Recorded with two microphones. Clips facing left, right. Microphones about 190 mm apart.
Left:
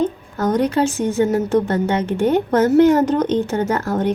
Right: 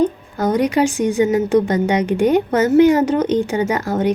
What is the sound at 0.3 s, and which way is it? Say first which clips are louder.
A woman's voice: right 1 dB; 10° right (ahead or behind).